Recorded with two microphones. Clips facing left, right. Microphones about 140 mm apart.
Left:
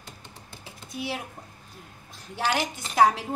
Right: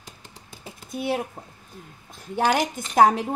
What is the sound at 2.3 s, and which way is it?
Speech, 50° right (ahead or behind).